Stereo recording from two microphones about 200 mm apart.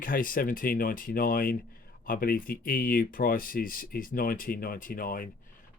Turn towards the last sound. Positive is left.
turn(degrees=45)  # may be behind; listen again after turning